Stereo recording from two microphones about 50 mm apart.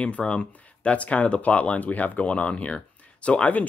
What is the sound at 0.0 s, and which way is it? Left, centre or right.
Speech, left.